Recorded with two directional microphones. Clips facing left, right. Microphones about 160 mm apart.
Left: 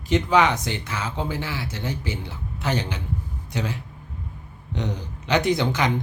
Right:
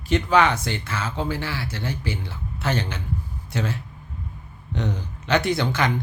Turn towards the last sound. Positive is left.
turn(degrees=15)  # may be behind; listen again after turning